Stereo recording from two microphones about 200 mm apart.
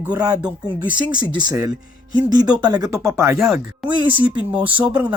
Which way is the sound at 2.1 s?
20° right (ahead or behind).